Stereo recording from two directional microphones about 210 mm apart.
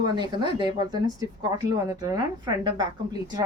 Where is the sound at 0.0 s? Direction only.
20° right (ahead or behind).